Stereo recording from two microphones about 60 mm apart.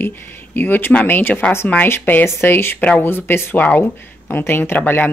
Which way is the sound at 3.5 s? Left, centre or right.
Left.